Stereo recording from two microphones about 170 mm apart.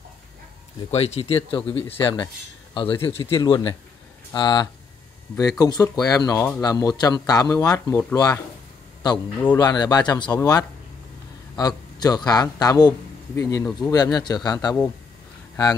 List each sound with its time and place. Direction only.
0.9 s speech: 35° left (ahead or behind); by 8.4 s 20° left (ahead or behind)
9.6 s a man's voice: 25° left (ahead or behind)